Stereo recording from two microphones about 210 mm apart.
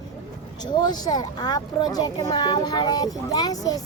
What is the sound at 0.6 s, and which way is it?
Speech, 20° left (ahead or behind).